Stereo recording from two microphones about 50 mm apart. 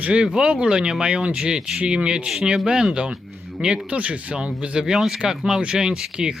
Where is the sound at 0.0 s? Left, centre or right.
Right.